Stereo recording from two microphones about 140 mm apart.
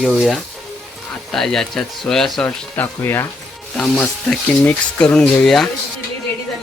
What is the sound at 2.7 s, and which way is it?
Speech, 15° left (ahead or behind).